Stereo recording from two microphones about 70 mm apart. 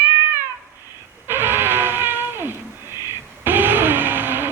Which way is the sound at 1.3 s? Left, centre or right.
Right.